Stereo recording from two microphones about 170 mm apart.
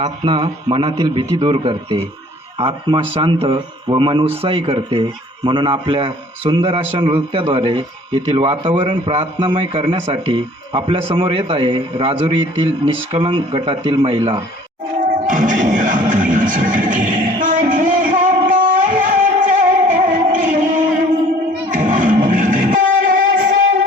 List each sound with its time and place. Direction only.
0.0 s a man's voice: 30° right (ahead or behind)
15.3 s music: 50° right (ahead or behind)
20.3 s a sound: 50° right (ahead or behind)
21.7 s music: 50° right (ahead or behind)